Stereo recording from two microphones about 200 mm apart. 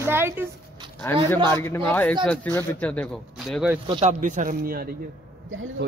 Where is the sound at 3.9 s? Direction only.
25° right (ahead or behind).